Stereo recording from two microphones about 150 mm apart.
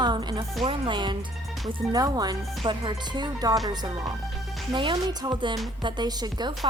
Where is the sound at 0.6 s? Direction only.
30° right (ahead or behind).